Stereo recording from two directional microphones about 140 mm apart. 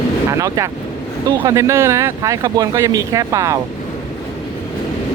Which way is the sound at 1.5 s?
20° right (ahead or behind).